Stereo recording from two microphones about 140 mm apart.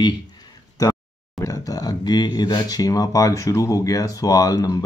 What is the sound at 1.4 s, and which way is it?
Speech, 25° left (ahead or behind).